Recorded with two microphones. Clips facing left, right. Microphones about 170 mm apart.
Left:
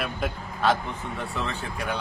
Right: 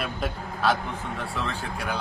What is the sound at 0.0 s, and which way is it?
Speech, centre (ahead or behind).